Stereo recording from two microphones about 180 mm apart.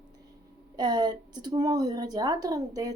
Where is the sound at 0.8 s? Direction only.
20° right (ahead or behind).